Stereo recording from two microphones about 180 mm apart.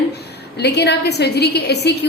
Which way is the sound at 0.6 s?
65° left (ahead or behind).